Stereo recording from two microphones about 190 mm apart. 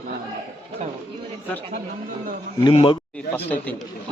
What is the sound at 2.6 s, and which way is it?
Speech, 25° left (ahead or behind).